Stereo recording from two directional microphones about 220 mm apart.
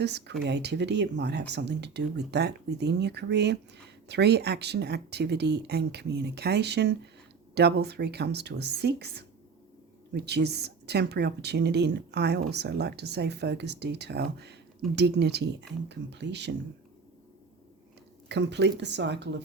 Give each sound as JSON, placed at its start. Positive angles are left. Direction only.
{"t": 0.0, "sound": "a woman's voice", "side_deg": -50}
{"t": 18.3, "sound": "a woman's voice", "side_deg": -50}